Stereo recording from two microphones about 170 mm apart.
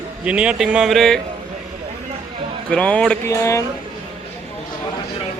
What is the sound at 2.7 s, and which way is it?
Speech, 5° left (ahead or behind).